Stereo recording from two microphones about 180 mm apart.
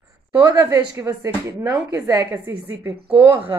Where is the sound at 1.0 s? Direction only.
20° right (ahead or behind).